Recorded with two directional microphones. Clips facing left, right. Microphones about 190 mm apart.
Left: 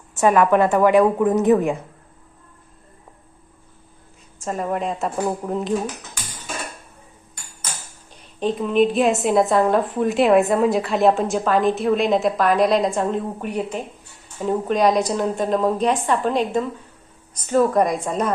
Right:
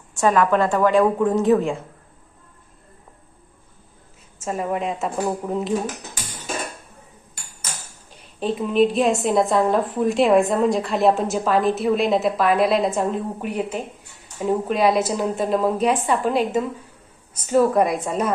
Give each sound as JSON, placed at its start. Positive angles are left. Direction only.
{"t": 0.2, "sound": "a woman's voice", "side_deg": 15}
{"t": 4.4, "sound": "a woman's voice", "side_deg": 0}
{"t": 8.4, "sound": "a woman's voice", "side_deg": -5}